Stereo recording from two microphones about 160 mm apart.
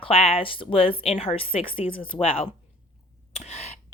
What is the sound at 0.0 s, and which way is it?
A woman's voice, 35° left (ahead or behind).